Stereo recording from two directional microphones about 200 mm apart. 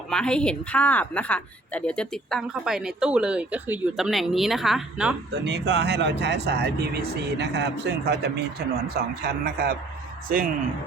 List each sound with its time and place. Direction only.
0.1 s speech: 5° left (ahead or behind)
5.3 s speech: 60° right (ahead or behind); by 10.5 s 45° right (ahead or behind)